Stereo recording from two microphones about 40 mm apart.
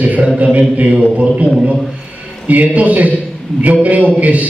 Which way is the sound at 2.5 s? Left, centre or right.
Right.